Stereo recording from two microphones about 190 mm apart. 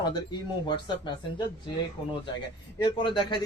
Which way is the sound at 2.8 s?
25° left (ahead or behind).